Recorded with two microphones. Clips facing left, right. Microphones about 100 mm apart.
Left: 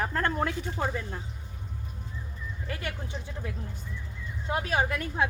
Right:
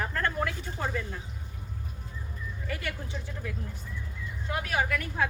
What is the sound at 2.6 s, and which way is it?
Speech, 30° left (ahead or behind).